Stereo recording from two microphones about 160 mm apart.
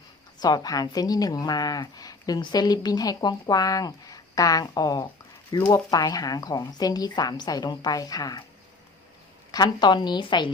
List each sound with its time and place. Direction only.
0.3 s a woman's voice: 25° left (ahead or behind)
9.5 s a woman's voice: 25° left (ahead or behind)